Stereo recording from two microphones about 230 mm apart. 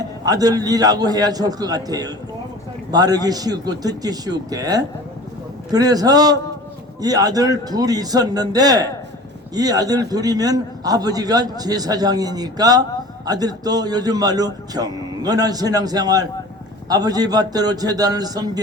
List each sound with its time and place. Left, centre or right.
0.3 s a man's voice: centre